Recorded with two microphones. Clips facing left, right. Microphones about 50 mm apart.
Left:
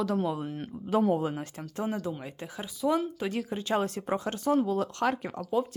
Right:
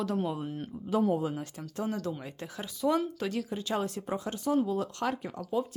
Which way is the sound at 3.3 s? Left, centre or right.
Left.